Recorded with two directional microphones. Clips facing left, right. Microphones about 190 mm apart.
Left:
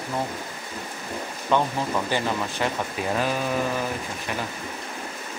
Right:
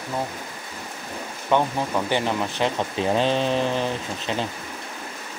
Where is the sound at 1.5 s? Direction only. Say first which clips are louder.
Right 2 dB; 20° right (ahead or behind).